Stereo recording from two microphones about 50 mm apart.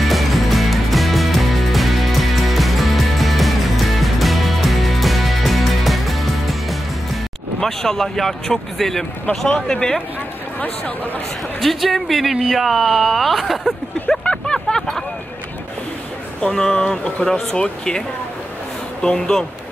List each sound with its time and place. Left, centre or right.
0.0 s music: centre
7.6 s speech: centre
11.6 s speech: centre
14.3 s a sound: centre
16.3 s speech: centre